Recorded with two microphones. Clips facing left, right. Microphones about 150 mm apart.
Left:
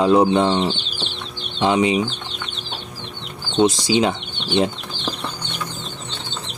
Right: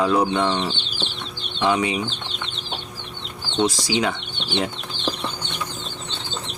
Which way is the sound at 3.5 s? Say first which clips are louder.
Left 5 dB; 20° left (ahead or behind).